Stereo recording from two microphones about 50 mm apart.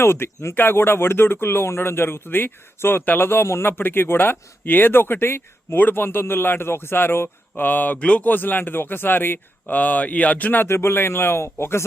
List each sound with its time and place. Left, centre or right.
0.0 s speech: left
3.7 s speech: left
9.7 s speech: left
10.7 s speech: left